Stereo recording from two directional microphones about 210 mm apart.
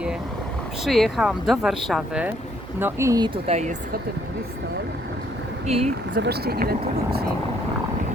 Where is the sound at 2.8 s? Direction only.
15° right (ahead or behind); by 3.7 s 30° right (ahead or behind).